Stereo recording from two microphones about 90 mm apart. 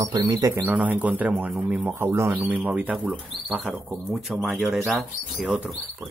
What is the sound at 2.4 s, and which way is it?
Speech, 20° right (ahead or behind).